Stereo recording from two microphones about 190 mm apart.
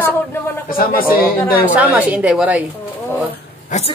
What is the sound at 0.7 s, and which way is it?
A woman's voice, 50° left (ahead or behind).